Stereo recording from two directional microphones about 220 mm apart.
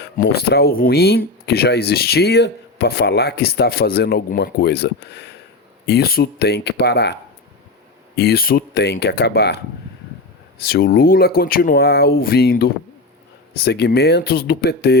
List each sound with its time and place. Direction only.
0.0 s speech: 45° left (ahead or behind)
10.6 s speech: 45° left (ahead or behind)